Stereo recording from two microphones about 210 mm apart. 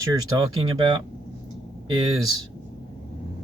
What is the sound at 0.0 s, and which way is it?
Speech, 20° right (ahead or behind).